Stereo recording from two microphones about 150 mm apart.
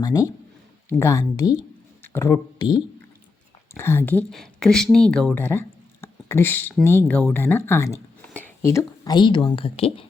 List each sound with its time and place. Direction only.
0.0 s speech: 25° left (ahead or behind)
3.8 s speech: 15° left (ahead or behind)
4.3 s speech: centre (ahead or behind); by 10.1 s 40° left (ahead or behind)